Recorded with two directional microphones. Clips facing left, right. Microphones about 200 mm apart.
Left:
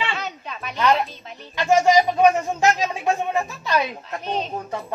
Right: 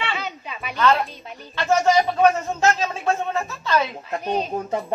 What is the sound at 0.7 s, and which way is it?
Speech, 15° left (ahead or behind).